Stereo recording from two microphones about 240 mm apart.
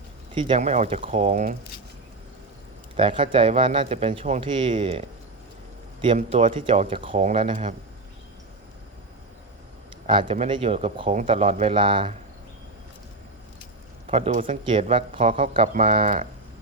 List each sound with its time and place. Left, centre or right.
0.3 s speech: right
2.9 s speech: right
10.1 s speech: right
14.1 s speech: right